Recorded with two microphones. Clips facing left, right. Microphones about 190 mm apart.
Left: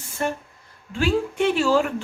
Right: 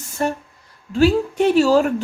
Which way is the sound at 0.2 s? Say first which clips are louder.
Right 4 dB; 40° right (ahead or behind).